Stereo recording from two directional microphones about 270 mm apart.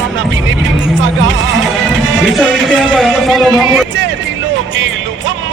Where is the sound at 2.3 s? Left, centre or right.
Centre.